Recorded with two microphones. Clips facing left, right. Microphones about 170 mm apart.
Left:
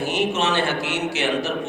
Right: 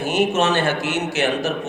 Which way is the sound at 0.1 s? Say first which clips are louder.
Right 5 dB; 45° right (ahead or behind).